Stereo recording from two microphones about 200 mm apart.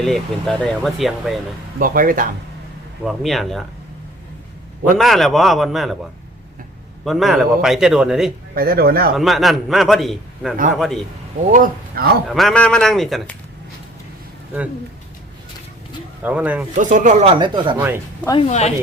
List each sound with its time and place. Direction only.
0.0 s a man's voice: centre (ahead or behind)
1.8 s speech: 45° right (ahead or behind)
3.0 s a man's voice: centre (ahead or behind)
4.9 s a man's voice: centre (ahead or behind)
7.0 s a man's voice: centre (ahead or behind)
8.5 s speech: 50° right (ahead or behind)
9.1 s a man's voice: centre (ahead or behind)
11.5 s speech: 45° right (ahead or behind)
12.3 s a man's voice: centre (ahead or behind)
16.2 s speech: 10° right (ahead or behind)
16.7 s speech: 40° right (ahead or behind)
17.3 s speech: 25° right (ahead or behind)
17.7 s speech: 10° right (ahead or behind)
18.3 s speech: 30° left (ahead or behind)